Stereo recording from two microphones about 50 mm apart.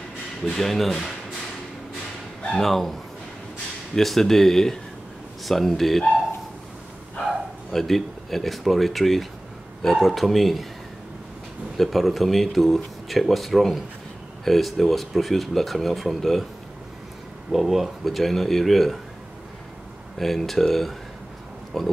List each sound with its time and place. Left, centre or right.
0.5 s speech: centre
2.5 s speech: centre
7.7 s speech: centre
11.7 s speech: centre
17.5 s speech: centre
20.2 s speech: centre